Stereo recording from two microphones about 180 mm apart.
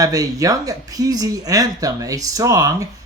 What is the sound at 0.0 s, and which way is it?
Speech, 20° right (ahead or behind).